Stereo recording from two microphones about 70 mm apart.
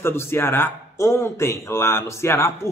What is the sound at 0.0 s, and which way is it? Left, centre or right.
Speech, left.